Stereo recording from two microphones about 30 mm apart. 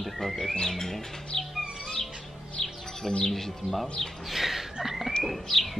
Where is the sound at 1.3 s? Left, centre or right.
Centre.